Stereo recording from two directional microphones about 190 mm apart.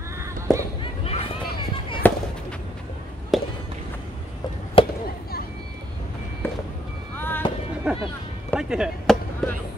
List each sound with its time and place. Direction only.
0.2 s a sound: 15° right (ahead or behind)
2.0 s fireworks: 10° left (ahead or behind)
3.3 s a sound: centre (ahead or behind)
4.8 s chop: 30° left (ahead or behind)
6.4 s reversing beeps: 10° left (ahead or behind)
7.2 s fireworks: 10° left (ahead or behind)
7.9 s music: 5° right (ahead or behind)
8.5 s chop: 5° right (ahead or behind)
9.4 s a sound: centre (ahead or behind)